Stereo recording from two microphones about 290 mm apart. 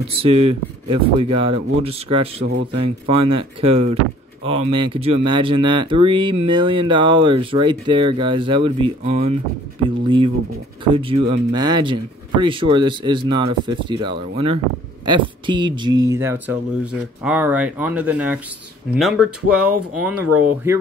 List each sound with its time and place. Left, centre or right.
0.1 s speech: centre